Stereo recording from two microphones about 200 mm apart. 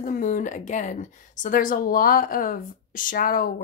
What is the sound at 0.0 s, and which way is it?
Speech, 40° left (ahead or behind).